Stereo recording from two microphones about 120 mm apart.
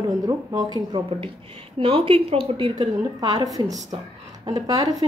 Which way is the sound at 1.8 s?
50° right (ahead or behind).